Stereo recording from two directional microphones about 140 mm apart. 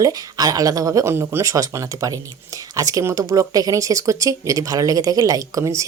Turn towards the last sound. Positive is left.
turn(degrees=-20)  # may be behind; listen again after turning